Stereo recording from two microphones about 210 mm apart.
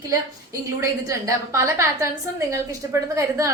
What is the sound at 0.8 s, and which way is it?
A woman's voice, 15° right (ahead or behind).